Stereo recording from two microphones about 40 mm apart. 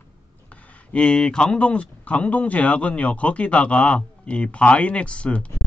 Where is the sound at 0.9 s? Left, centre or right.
Left.